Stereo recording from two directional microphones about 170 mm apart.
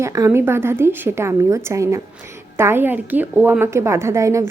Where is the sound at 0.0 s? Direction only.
20° right (ahead or behind).